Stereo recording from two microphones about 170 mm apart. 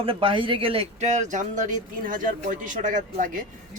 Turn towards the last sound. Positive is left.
turn(degrees=-50)  # may be behind; listen again after turning